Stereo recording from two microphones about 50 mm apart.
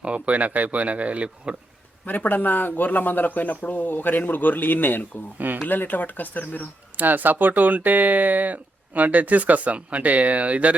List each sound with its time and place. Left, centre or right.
0.0 s speech: right
2.0 s speech: left
6.9 s speech: right